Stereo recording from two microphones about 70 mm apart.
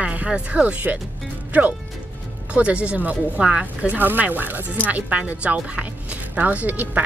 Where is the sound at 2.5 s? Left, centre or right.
Centre.